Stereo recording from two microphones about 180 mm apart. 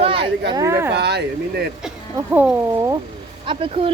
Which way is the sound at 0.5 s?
15° right (ahead or behind).